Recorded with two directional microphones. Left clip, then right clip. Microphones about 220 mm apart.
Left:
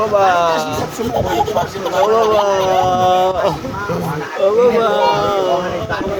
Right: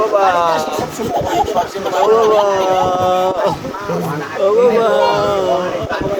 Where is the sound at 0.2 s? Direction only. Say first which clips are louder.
Left 2 dB; 15° left (ahead or behind).